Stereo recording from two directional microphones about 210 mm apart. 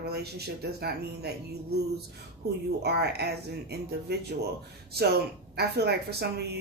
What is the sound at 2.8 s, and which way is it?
Speech, 50° right (ahead or behind).